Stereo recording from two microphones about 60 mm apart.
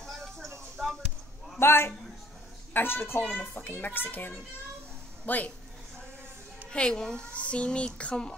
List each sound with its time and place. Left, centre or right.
0.0 s a sound: centre
0.8 s basketball bounce: centre
1.6 s a man's voice: left
3.2 s a child's voice: left
6.7 s a child's voice: centre